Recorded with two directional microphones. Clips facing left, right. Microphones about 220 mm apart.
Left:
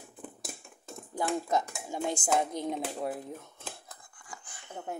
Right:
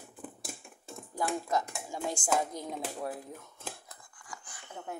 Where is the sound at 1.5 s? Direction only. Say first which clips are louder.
Left 2 dB; 20° left (ahead or behind).